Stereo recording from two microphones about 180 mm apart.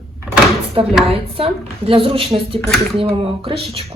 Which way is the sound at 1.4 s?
30° right (ahead or behind).